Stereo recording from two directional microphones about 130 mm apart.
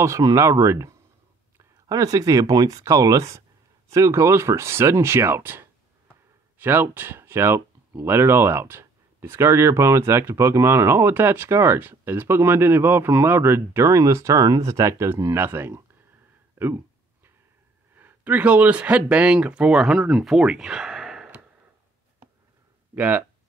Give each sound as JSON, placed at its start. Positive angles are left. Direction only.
{"t": 0.0, "sound": "speech", "side_deg": -25}
{"t": 16.5, "sound": "a sound", "side_deg": -15}
{"t": 17.9, "sound": "speech", "side_deg": -15}
{"t": 22.9, "sound": "speech", "side_deg": -10}